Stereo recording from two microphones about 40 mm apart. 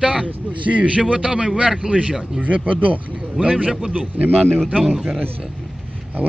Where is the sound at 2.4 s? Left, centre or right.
Right.